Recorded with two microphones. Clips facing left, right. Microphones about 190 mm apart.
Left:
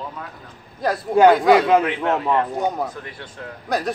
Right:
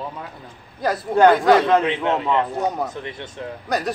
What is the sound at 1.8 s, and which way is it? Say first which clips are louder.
Speech: even; 25° right (ahead or behind).